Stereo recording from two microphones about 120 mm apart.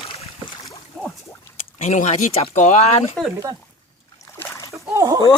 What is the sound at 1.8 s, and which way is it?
Speech, 80° left.